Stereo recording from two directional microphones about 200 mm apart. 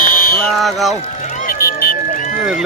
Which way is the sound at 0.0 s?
45° left (ahead or behind).